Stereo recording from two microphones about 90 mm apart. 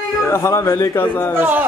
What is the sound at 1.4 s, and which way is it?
Speech, 20° right (ahead or behind).